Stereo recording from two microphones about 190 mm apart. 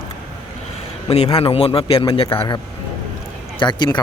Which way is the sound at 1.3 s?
30° left (ahead or behind).